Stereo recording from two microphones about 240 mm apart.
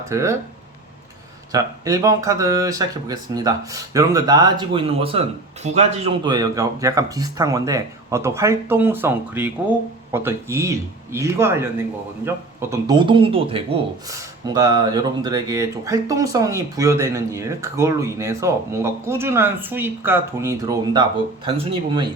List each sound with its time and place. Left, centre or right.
0.0 s speech: centre
1.5 s speech: centre